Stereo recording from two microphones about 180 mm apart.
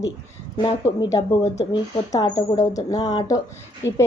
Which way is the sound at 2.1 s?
20° left (ahead or behind).